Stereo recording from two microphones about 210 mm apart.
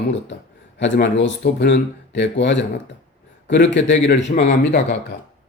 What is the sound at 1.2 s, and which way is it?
Speech, 55° left (ahead or behind).